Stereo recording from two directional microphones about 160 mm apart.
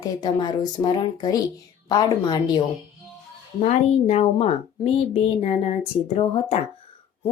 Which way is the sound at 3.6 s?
40° left (ahead or behind).